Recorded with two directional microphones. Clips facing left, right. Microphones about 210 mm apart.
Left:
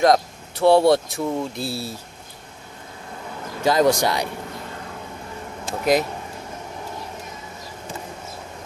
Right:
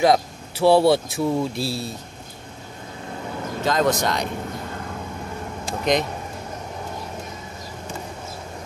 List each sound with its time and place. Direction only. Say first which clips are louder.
0.0 s speech: left 1 dB; 5° right (ahead or behind)
3.6 s speech: left 3 dB; 10° left (ahead or behind)
5.7 s speech: left 2 dB; 5° left (ahead or behind)